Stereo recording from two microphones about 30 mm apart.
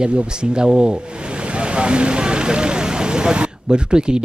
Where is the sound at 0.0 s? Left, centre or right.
Right.